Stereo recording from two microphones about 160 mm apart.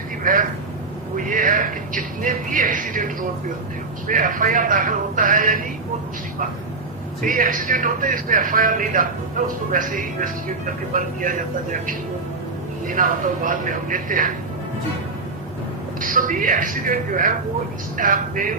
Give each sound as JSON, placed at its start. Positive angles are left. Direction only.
{"t": 0.2, "sound": "speech", "side_deg": -60}
{"t": 7.2, "sound": "speech", "side_deg": -60}
{"t": 16.0, "sound": "speech", "side_deg": -60}